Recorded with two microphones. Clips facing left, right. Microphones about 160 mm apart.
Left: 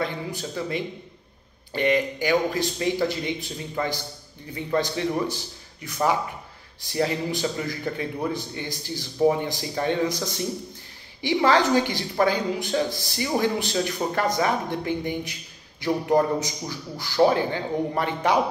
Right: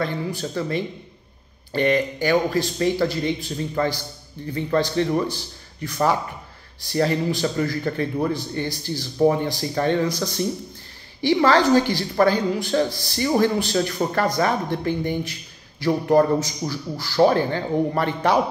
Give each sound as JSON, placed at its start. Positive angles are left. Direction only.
{"t": 0.0, "sound": "speech", "side_deg": 15}